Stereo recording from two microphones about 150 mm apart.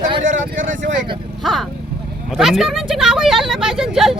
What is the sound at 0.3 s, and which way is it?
Vehicle, 60° right (ahead or behind).